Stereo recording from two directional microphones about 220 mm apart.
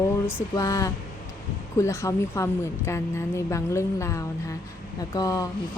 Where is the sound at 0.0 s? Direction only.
10° left (ahead or behind).